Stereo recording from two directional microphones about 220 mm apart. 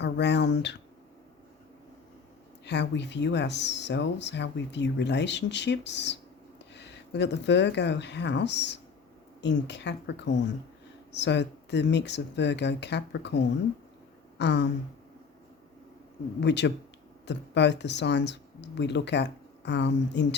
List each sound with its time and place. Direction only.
0.0 s speech: 50° left (ahead or behind)
2.6 s speech: 50° left (ahead or behind)
16.4 s speech: 50° left (ahead or behind)